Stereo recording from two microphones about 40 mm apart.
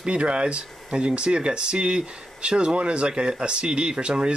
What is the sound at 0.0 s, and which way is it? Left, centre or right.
Speech, right.